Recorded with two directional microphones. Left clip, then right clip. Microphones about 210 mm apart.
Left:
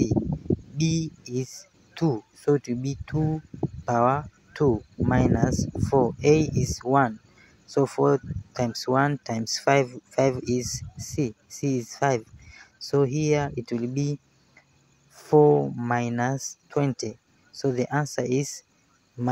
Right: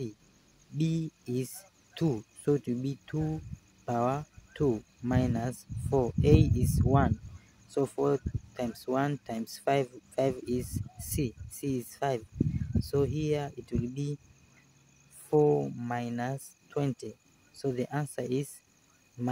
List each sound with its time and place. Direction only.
0.7 s speech: 15° left (ahead or behind)
15.2 s speech: 20° left (ahead or behind)